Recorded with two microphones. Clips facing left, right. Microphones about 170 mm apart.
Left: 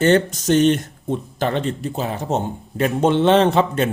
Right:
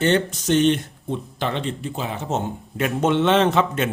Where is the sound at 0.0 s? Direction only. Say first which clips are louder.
Left 4 dB; 45° left (ahead or behind).